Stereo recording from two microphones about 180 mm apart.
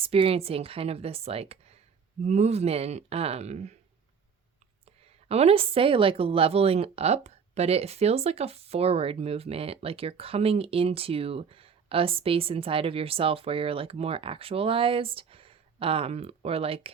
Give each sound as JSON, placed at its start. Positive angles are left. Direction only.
{"t": 0.0, "sound": "a woman's voice", "side_deg": -30}
{"t": 5.3, "sound": "a woman's voice", "side_deg": -35}